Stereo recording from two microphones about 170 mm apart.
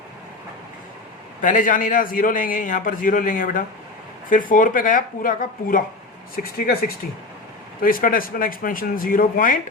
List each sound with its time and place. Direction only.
1.4 s a man's voice: 50° left (ahead or behind)